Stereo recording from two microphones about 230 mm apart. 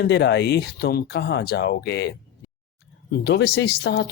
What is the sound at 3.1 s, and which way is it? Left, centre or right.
Speech, left.